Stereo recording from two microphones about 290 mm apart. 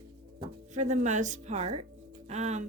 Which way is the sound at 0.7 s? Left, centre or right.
Right.